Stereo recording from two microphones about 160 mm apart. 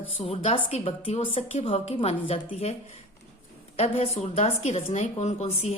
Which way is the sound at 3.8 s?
40° left (ahead or behind).